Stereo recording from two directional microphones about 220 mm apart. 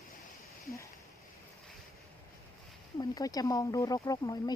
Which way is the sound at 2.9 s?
15° left (ahead or behind).